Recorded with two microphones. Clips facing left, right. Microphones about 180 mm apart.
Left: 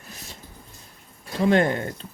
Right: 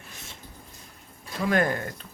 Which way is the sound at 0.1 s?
35° left (ahead or behind).